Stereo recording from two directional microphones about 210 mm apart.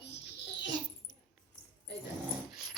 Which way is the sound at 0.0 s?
55° left (ahead or behind).